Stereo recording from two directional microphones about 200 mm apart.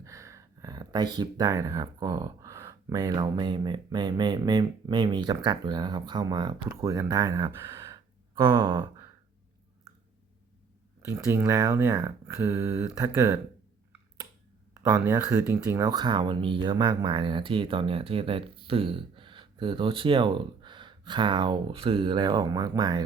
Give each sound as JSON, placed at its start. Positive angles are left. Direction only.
{"t": 0.0, "sound": "speech", "side_deg": -15}
{"t": 8.6, "sound": "speech", "side_deg": -25}
{"t": 11.1, "sound": "speech", "side_deg": -15}
{"t": 14.7, "sound": "speech", "side_deg": -15}